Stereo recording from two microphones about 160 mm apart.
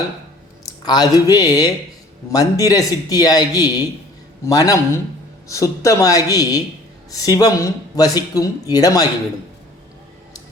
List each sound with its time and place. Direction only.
0.6 s a man's voice: 25° left (ahead or behind)